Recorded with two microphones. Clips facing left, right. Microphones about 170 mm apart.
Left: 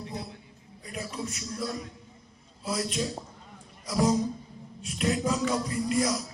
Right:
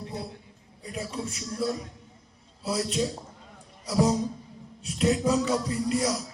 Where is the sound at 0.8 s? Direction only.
30° right (ahead or behind).